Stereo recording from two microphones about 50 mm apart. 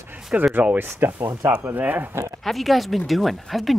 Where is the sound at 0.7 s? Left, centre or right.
Right.